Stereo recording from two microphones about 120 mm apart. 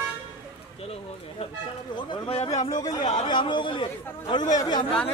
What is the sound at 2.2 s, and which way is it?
Speech, 50° left (ahead or behind).